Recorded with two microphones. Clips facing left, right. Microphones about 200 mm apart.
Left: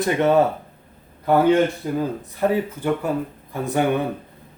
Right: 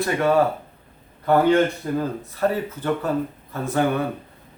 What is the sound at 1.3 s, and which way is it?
Speech, 5° left (ahead or behind).